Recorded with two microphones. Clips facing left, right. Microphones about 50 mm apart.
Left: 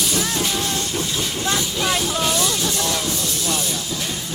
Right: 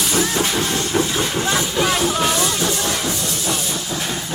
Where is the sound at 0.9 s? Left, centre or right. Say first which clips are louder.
Right 5 dB; right.